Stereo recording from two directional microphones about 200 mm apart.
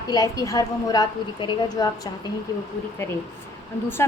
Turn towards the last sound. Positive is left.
turn(degrees=10)  # may be behind; listen again after turning